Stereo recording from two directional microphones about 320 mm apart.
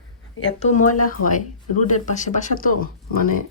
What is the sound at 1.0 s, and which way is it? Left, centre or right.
Speech, left.